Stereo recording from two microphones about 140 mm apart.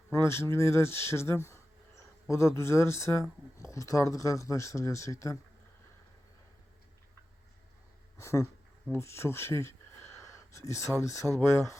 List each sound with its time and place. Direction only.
0.1 s speech: 20° left (ahead or behind)
8.2 s speech: 20° left (ahead or behind)
10.2 s a sound: 20° left (ahead or behind)
10.9 s speech: 20° left (ahead or behind)